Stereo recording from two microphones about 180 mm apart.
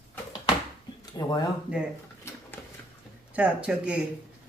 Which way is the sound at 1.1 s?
20° left (ahead or behind).